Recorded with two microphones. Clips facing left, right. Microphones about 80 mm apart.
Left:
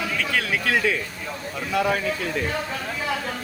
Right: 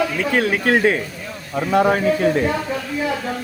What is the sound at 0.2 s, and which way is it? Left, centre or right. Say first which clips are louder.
A man's voice: right 6 dB; right.